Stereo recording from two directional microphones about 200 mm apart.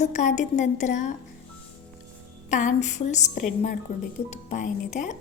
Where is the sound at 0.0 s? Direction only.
35° left (ahead or behind).